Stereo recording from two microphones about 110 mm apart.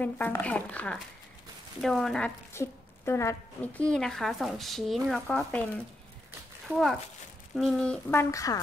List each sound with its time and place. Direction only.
0.0 s speech: 15° left (ahead or behind)
1.8 s speech: centre (ahead or behind)
2.5 s a sound: 25° left (ahead or behind)
3.6 s speech: 10° left (ahead or behind)
5.3 s speech: 10° left (ahead or behind)
6.7 s speech: centre (ahead or behind)
8.1 s speech: 25° left (ahead or behind)